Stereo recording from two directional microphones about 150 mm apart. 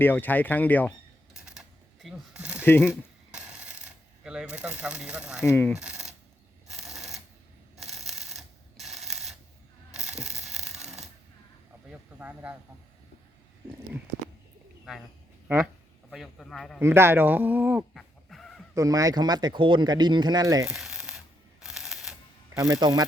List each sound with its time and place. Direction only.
0.0 s speech: 15° left (ahead or behind)
1.3 s coin: 5° right (ahead or behind)
2.6 s speech: 15° left (ahead or behind)
2.9 s coin: 5° right (ahead or behind)
5.4 s speech: 15° left (ahead or behind)
5.8 s coin: 5° right (ahead or behind)
6.7 s a sound: centre (ahead or behind)
15.4 s a sound: 5° right (ahead or behind)
16.8 s speech: 15° right (ahead or behind)
17.9 s chicken: centre (ahead or behind)
18.7 s speech: 20° right (ahead or behind)
20.7 s a sound: centre (ahead or behind)
22.5 s speech: 20° right (ahead or behind)